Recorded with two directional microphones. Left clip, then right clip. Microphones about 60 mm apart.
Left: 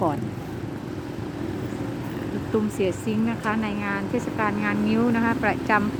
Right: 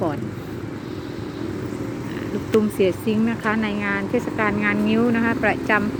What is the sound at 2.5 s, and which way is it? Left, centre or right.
Speech, right.